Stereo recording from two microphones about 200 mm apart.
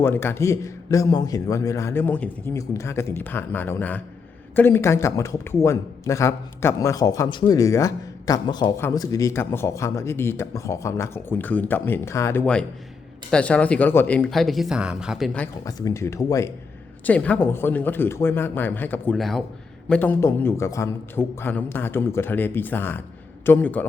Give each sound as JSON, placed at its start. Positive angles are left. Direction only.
{"t": 0.0, "sound": "a man's voice", "side_deg": 10}
{"t": 15.6, "sound": "a man's voice", "side_deg": 15}